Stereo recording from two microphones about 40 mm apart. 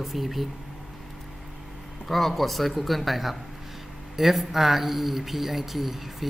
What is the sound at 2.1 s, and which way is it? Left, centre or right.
Speech, centre.